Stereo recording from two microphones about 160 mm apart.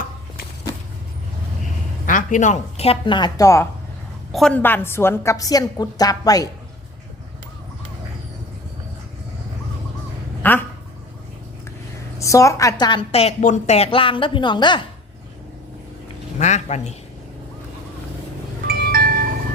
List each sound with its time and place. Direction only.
2.0 s a woman's voice: 55° left (ahead or behind); by 3.7 s 20° left (ahead or behind)
4.3 s a woman's voice: centre (ahead or behind); by 6.5 s 25° left (ahead or behind)
10.4 s a woman's voice: 10° left (ahead or behind)
12.2 s a woman's voice: 20° left (ahead or behind)
16.4 s speech: 45° left (ahead or behind)
18.7 s music: 70° right (ahead or behind)